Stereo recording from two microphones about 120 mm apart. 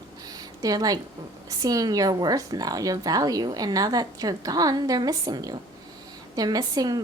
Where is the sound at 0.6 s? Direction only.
30° right (ahead or behind).